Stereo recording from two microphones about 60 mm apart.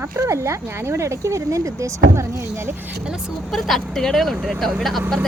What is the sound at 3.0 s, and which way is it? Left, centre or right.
Speech, centre.